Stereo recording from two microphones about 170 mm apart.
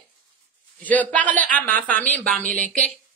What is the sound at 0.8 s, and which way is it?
A man's voice, 10° left (ahead or behind).